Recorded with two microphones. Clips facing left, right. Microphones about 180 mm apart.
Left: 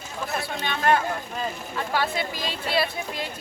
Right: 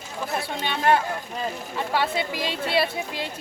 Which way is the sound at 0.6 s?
30° right (ahead or behind).